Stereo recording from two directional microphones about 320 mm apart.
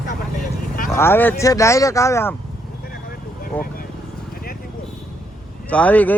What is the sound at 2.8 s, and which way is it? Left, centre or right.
Vehicle, left.